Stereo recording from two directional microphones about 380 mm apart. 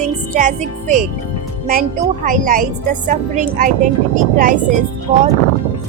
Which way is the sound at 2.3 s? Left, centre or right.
Right.